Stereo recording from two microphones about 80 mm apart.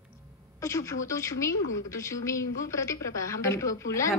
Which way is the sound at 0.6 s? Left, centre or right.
Left.